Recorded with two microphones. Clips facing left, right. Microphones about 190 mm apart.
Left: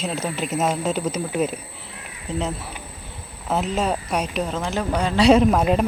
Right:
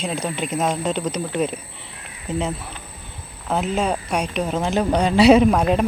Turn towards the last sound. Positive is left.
turn(degrees=0)  # may be behind; listen again after turning